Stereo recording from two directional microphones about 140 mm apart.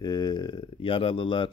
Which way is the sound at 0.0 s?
30° left (ahead or behind).